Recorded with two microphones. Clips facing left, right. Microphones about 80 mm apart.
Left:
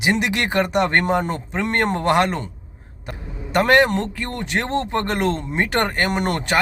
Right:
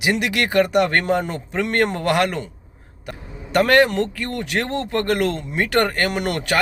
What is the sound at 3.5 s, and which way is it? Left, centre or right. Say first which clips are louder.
A man's voice: even; left.